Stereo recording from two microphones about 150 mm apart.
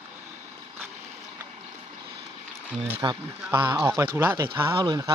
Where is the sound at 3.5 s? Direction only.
15° right (ahead or behind).